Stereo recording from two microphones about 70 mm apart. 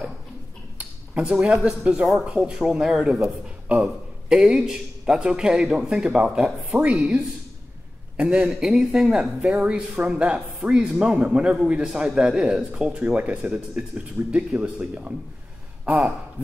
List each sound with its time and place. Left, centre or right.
0.7 s speech: centre
2.0 s speech: centre
2.2 s a man's voice: centre
8.2 s a man's voice: centre